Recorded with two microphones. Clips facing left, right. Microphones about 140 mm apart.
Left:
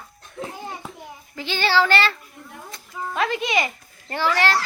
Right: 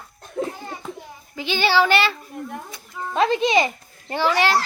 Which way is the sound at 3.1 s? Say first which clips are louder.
Right 5 dB; 30° right (ahead or behind).